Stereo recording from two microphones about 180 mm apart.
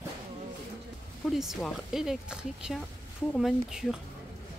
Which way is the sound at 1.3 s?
Centre (ahead or behind).